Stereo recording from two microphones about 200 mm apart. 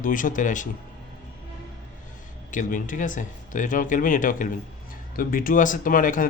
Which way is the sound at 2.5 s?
40° left (ahead or behind).